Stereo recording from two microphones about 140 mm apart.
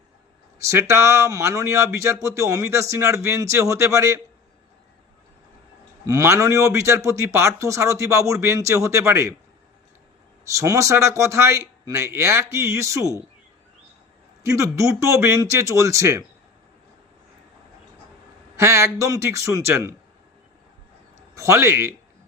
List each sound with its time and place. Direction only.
0.6 s speech: 20° right (ahead or behind)
6.1 s speech: 20° right (ahead or behind)
10.5 s speech: 20° right (ahead or behind)
14.4 s speech: 20° right (ahead or behind)
18.5 s speech: 20° right (ahead or behind)
21.3 s speech: 20° right (ahead or behind)